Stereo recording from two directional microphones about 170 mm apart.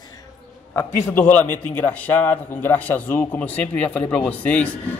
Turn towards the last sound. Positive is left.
turn(degrees=10)  # may be behind; listen again after turning